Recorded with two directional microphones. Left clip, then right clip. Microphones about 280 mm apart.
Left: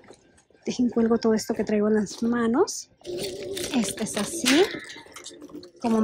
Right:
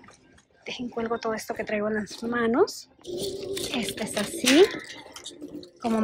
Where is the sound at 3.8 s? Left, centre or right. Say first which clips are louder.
Even; centre.